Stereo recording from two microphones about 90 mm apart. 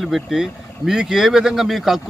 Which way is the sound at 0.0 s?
5° right (ahead or behind).